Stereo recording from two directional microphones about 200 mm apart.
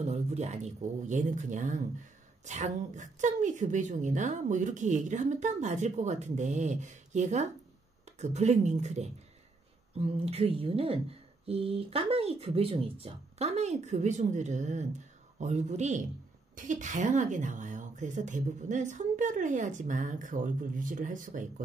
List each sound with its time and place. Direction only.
0.0 s a woman's voice: 35° right (ahead or behind)